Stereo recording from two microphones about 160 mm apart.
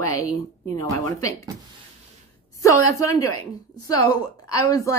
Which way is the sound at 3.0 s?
20° left (ahead or behind).